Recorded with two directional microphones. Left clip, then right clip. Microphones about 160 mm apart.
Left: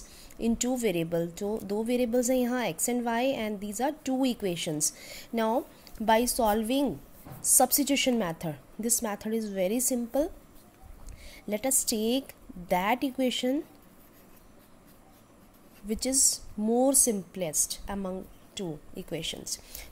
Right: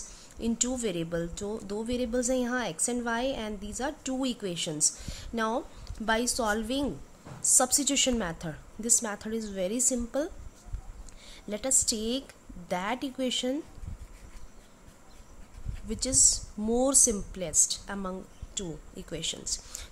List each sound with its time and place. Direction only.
0.4 s a woman's voice: 15° left (ahead or behind)
15.9 s a woman's voice: 15° left (ahead or behind)